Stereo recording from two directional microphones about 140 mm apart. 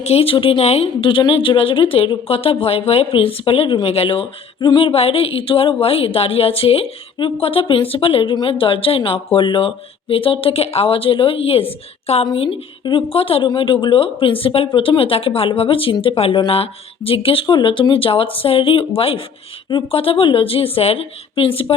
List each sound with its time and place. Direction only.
0.0 s speech: 45° left (ahead or behind)
12.3 s speech: 35° left (ahead or behind)